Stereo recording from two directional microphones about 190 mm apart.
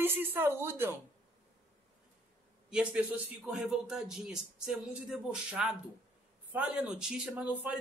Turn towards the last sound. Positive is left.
turn(degrees=-10)  # may be behind; listen again after turning